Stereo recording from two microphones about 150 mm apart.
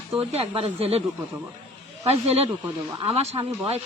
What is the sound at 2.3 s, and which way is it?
Speech, 40° right (ahead or behind).